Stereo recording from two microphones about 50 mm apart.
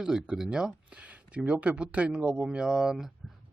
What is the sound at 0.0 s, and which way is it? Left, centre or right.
Speech, centre.